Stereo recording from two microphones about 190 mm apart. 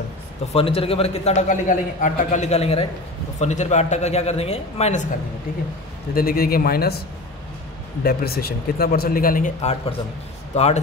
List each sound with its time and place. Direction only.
0.5 s a man's voice: 30° left (ahead or behind)
6.1 s speech: 50° left (ahead or behind)
8.0 s speech: 55° left (ahead or behind); by 10.8 s 35° left (ahead or behind)